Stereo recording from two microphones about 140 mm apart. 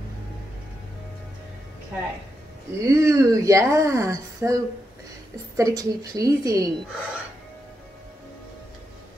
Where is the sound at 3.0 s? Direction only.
20° right (ahead or behind).